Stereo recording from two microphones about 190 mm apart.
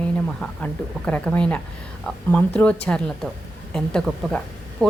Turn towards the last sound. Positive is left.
turn(degrees=5)  # may be behind; listen again after turning